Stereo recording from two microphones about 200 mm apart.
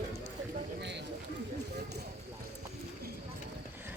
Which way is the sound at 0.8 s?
60° right (ahead or behind).